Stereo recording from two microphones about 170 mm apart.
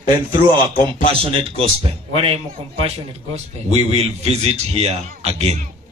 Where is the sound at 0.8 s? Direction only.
35° right (ahead or behind).